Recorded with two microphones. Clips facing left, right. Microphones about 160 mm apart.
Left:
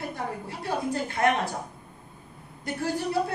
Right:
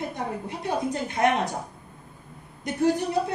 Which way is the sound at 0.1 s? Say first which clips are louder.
Right 2 dB; 20° right (ahead or behind).